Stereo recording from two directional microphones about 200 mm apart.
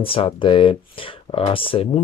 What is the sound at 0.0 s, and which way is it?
Speech, 30° left (ahead or behind).